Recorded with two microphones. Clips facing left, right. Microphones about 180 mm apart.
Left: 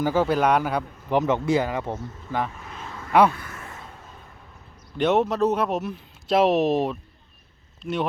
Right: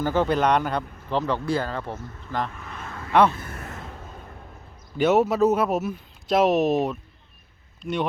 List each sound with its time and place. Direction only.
0.0 s speech: 10° left (ahead or behind)
1.2 s speech: 20° left (ahead or behind)
3.4 s a sound: 45° right (ahead or behind)
4.9 s speech: 5° right (ahead or behind)